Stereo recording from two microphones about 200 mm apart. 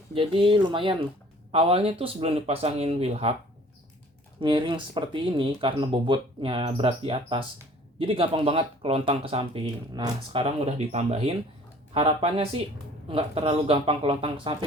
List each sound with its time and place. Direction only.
0.1 s speech: 25° right (ahead or behind)
4.4 s speech: 25° right (ahead or behind)